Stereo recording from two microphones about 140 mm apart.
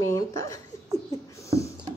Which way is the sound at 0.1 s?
20° left (ahead or behind).